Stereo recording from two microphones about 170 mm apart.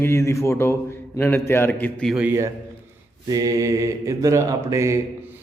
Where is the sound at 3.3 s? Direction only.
20° right (ahead or behind).